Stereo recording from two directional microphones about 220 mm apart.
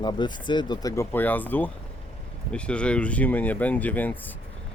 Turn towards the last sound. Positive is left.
turn(degrees=5)  # may be behind; listen again after turning